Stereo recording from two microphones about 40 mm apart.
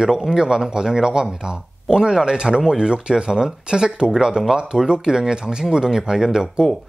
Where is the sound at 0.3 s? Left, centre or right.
Centre.